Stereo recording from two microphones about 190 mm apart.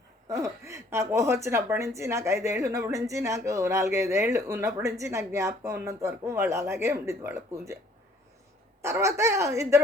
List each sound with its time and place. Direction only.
0.3 s a woman's voice: 15° right (ahead or behind)
8.8 s a woman's voice: 15° right (ahead or behind)